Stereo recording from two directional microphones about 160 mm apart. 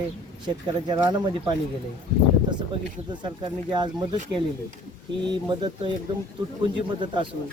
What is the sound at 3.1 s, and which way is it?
Speech, 30° right (ahead or behind).